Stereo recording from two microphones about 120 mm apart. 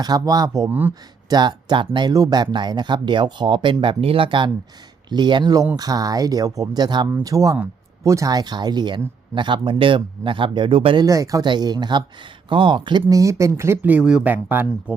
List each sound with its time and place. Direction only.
0.0 s speech: 35° right (ahead or behind)
0.7 s speech: 15° right (ahead or behind)
1.3 s speech: 35° right (ahead or behind)
11.0 s speech: 30° right (ahead or behind)